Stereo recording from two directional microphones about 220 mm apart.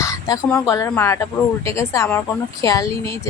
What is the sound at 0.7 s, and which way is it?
Speech, 15° left (ahead or behind).